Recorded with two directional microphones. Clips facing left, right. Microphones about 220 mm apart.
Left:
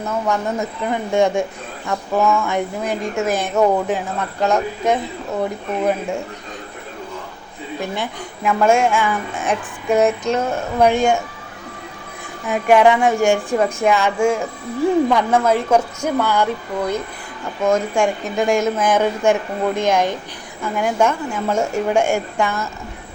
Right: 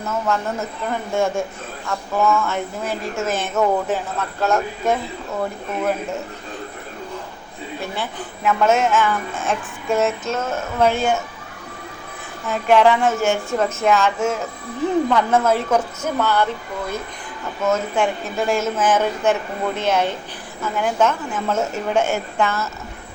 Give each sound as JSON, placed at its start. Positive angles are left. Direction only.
{"t": 0.3, "sound": "music", "side_deg": 15}
{"t": 8.4, "sound": "music", "side_deg": 10}
{"t": 12.5, "sound": "music", "side_deg": 15}